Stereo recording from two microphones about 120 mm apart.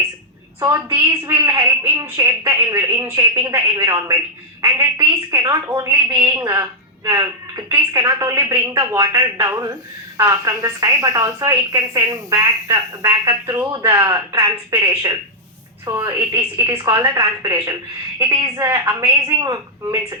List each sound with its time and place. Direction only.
0.6 s a woman's voice: 25° right (ahead or behind)